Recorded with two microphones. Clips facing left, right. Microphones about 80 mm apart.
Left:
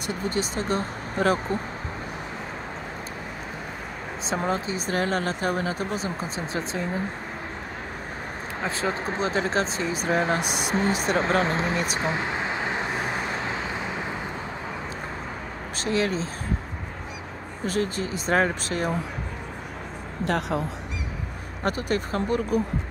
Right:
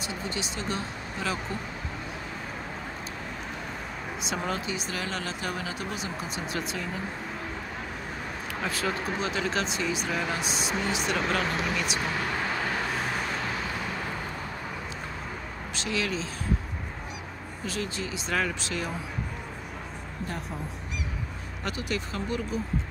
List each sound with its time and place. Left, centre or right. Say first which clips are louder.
0.0 s speech: left 6 dB; left
4.4 s speech: left 6 dB; left
8.5 s speech: left 3 dB; left
10.4 s speech: left 4 dB; left
10.8 s speech: left 6 dB; left
12.0 s vehicle: left 3 dB; left
15.8 s speech: left 6 dB; left
17.6 s speech: left 7 dB; left
20.2 s a woman's voice: left 13 dB; left
21.6 s speech: left 7 dB; left